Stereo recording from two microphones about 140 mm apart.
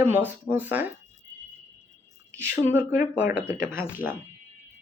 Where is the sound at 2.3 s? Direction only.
15° right (ahead or behind).